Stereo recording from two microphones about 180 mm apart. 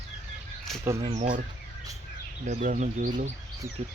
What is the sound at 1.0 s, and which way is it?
Speech, 30° right (ahead or behind).